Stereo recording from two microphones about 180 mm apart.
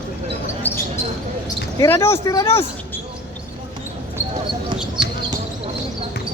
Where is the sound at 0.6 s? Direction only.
10° left (ahead or behind).